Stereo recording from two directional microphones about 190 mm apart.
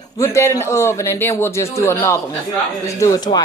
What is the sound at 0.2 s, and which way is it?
Female singing, 15° left (ahead or behind).